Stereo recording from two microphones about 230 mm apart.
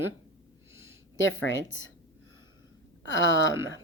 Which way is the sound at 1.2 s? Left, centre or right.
Left.